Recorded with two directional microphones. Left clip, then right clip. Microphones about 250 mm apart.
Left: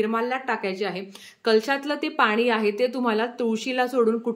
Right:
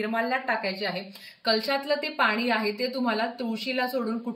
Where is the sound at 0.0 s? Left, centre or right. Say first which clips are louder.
Left 2 dB; centre.